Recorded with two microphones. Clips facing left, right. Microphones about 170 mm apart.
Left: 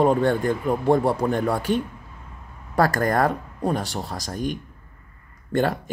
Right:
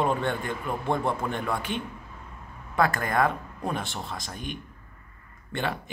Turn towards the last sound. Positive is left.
turn(degrees=40)  # may be behind; listen again after turning